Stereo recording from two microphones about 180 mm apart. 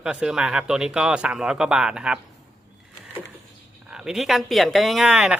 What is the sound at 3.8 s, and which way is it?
Speech, 5° right (ahead or behind).